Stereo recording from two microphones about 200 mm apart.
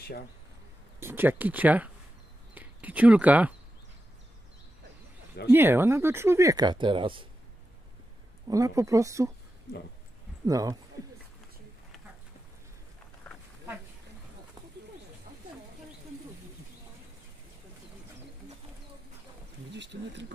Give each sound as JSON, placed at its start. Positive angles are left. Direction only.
{"t": 1.0, "sound": "speech", "side_deg": -10}
{"t": 5.5, "sound": "speech", "side_deg": -10}
{"t": 8.5, "sound": "speech", "side_deg": -15}
{"t": 10.4, "sound": "speech", "side_deg": -15}
{"t": 19.7, "sound": "speech", "side_deg": -60}